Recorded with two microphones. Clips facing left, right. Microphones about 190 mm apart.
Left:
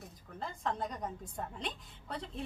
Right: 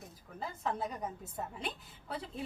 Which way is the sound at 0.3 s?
5° right (ahead or behind).